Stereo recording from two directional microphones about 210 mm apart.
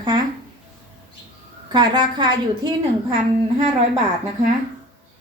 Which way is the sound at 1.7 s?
20° right (ahead or behind).